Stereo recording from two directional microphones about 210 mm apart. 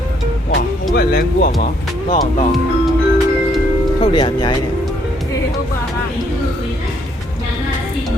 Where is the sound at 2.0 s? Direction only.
25° left (ahead or behind).